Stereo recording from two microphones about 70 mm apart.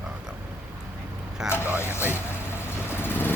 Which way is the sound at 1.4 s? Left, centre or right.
Centre.